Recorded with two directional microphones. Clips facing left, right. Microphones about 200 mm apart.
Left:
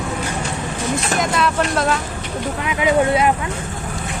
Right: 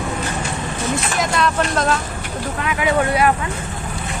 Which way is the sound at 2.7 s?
20° left (ahead or behind).